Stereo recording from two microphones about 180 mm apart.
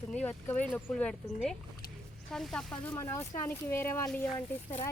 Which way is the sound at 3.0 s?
15° left (ahead or behind).